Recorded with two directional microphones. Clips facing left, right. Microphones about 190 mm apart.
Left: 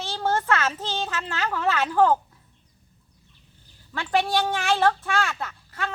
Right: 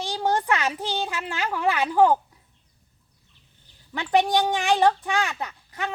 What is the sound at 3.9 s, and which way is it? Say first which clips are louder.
A child's voice: right 2 dB; 20° right (ahead or behind).